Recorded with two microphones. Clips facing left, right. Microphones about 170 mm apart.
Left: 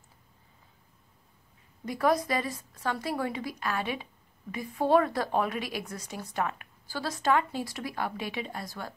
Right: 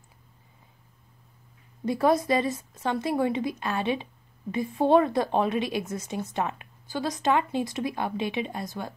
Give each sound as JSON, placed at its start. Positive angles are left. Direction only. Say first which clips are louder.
{"t": 1.9, "sound": "a woman's voice", "louder": "right 4 dB", "side_deg": -25}